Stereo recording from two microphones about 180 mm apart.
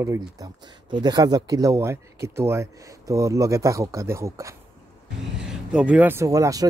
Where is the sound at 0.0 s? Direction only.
15° right (ahead or behind).